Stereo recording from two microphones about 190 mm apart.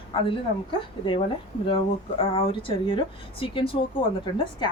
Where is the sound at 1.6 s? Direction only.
30° left (ahead or behind).